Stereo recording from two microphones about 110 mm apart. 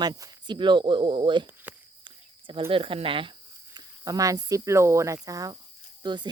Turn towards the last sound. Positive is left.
turn(degrees=-45)  # may be behind; listen again after turning